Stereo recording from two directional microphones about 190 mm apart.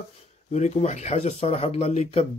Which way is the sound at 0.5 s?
35° left (ahead or behind).